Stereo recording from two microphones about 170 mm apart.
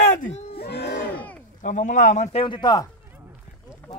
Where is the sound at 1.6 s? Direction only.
45° left (ahead or behind).